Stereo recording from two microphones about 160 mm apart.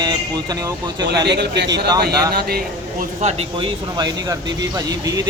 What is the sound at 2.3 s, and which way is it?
Speech, 75° right (ahead or behind).